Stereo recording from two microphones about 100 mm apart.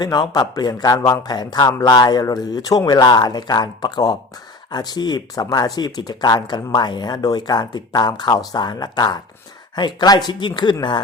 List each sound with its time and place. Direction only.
0.0 s a man's voice: 45° left (ahead or behind)